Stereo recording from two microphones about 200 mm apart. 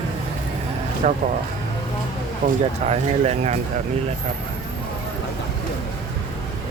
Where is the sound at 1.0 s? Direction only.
35° right (ahead or behind).